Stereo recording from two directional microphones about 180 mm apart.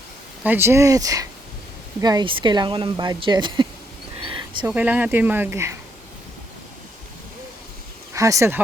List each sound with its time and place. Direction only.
0.4 s speech: 10° right (ahead or behind)
4.2 s a sound: 30° right (ahead or behind)
4.6 s speech: 10° right (ahead or behind)
8.1 s speech: 15° right (ahead or behind)